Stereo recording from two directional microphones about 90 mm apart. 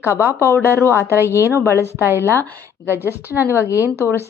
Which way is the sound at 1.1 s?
25° right (ahead or behind).